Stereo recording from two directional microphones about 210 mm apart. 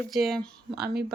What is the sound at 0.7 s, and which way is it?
Speech, 50° right (ahead or behind).